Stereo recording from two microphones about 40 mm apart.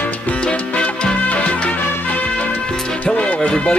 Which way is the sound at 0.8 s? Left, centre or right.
Left.